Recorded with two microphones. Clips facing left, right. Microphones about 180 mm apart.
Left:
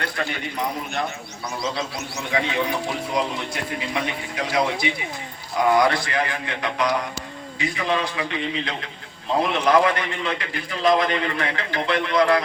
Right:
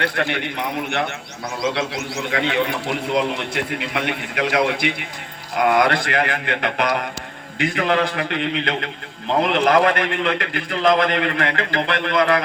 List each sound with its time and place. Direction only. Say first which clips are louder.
0.0 s speech: right 5 dB; 70° right (ahead or behind)
2.3 s a man's voice: right 2 dB; 70° right (ahead or behind)